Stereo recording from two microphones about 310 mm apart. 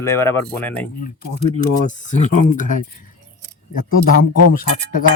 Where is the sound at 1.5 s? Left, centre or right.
Left.